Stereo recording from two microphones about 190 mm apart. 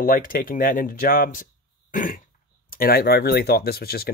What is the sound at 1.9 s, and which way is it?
Cough, 45° left (ahead or behind).